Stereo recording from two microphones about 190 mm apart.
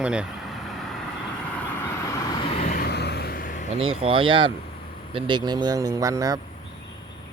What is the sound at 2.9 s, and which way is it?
Vehicle, 60° left (ahead or behind).